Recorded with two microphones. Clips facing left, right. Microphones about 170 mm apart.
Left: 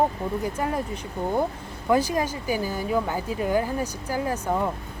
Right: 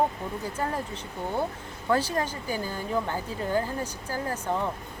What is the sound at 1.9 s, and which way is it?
A woman's voice, 10° left (ahead or behind).